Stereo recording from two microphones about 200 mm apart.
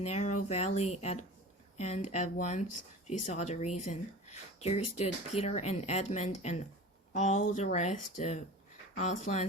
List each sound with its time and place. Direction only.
0.0 s speech: 35° left (ahead or behind)